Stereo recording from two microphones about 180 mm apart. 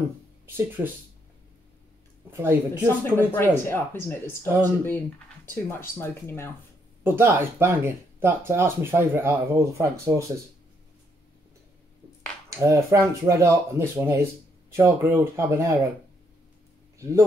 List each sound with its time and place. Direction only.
0.5 s speech: 10° right (ahead or behind)
2.3 s speech: 10° right (ahead or behind)
3.3 s speech: 15° left (ahead or behind)
7.0 s speech: 10° right (ahead or behind)
12.4 s speech: 15° right (ahead or behind)